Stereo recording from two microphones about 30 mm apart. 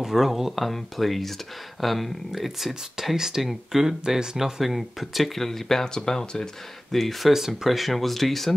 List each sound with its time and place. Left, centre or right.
0.0 s speech: centre
5.9 s speech: left
6.9 s speech: centre
7.3 s speech: centre
7.8 s speech: centre